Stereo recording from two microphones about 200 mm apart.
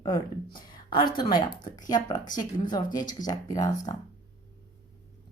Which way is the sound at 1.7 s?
20° left (ahead or behind).